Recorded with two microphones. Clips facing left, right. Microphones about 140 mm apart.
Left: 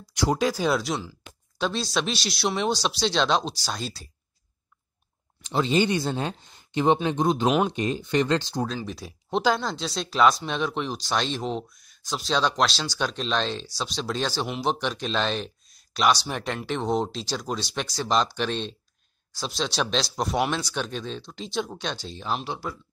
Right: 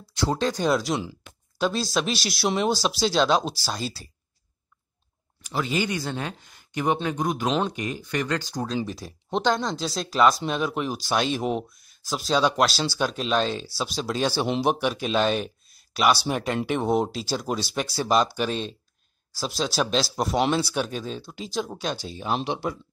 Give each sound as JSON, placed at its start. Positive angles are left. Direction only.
{"t": 0.1, "sound": "speech", "side_deg": 15}
{"t": 5.4, "sound": "speech", "side_deg": 25}
{"t": 7.4, "sound": "speech", "side_deg": 10}
{"t": 7.7, "sound": "speech", "side_deg": 25}
{"t": 8.8, "sound": "speech", "side_deg": 0}
{"t": 22.3, "sound": "speech", "side_deg": -20}